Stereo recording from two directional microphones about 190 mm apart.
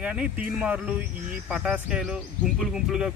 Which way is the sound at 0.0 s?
5° right (ahead or behind).